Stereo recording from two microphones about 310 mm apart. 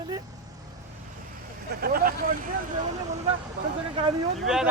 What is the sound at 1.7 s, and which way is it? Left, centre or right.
Speech, right.